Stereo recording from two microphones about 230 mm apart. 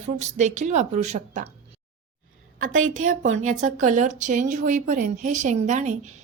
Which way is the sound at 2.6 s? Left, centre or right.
Right.